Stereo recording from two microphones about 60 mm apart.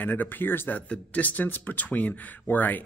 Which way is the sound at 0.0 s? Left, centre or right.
Left.